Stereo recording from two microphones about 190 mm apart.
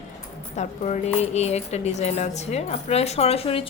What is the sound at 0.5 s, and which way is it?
Speech, 40° left (ahead or behind).